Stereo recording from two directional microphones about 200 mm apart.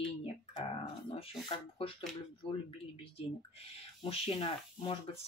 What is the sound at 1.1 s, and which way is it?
Speech, 30° left (ahead or behind).